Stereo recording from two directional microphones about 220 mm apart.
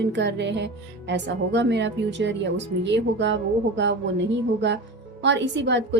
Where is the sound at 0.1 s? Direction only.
55° right (ahead or behind).